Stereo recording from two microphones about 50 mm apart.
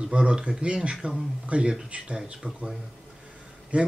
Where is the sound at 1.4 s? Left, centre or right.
Right.